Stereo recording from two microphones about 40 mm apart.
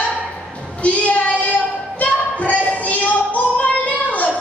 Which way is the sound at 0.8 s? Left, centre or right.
Left.